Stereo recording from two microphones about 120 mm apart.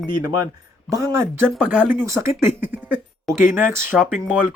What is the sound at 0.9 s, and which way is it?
Speech, 25° right (ahead or behind).